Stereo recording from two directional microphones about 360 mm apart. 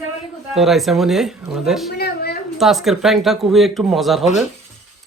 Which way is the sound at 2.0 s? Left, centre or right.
Left.